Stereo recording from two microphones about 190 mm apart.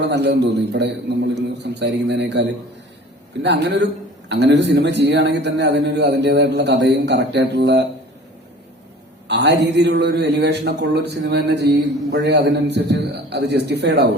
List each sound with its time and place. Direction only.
0.0 s a man's voice: 60° right (ahead or behind)
9.2 s a man's voice: 65° right (ahead or behind)